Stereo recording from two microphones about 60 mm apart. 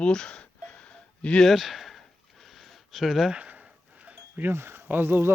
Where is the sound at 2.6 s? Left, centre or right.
Centre.